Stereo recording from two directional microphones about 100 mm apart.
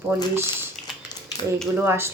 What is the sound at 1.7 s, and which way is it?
Speech, 25° right (ahead or behind).